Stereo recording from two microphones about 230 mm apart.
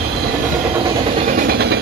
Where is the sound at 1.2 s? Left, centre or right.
Right.